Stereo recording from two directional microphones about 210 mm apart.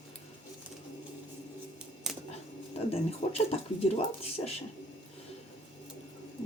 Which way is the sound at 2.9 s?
30° left (ahead or behind).